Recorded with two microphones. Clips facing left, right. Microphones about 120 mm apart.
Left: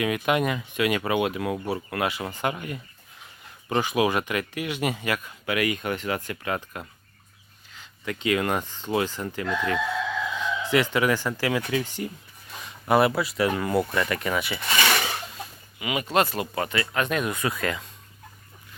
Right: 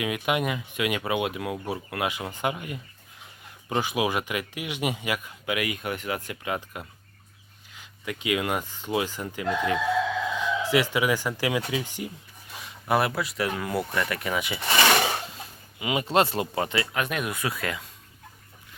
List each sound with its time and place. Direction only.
0.0 s speech: 10° right (ahead or behind)
12.5 s speech: 5° right (ahead or behind)
14.7 s a sound: 30° right (ahead or behind)
15.8 s speech: 25° right (ahead or behind)
16.9 s speech: 10° right (ahead or behind)